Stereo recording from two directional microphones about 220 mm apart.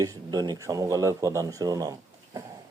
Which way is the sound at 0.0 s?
15° right (ahead or behind).